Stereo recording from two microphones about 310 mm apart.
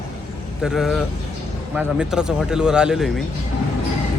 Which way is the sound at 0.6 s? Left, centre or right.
Centre.